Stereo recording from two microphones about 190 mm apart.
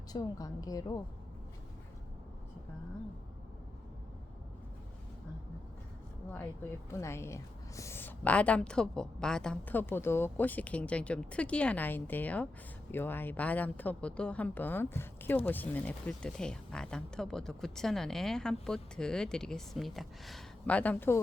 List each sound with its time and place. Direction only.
0.1 s a woman's voice: 20° left (ahead or behind)
7.0 s a woman's voice: 15° left (ahead or behind)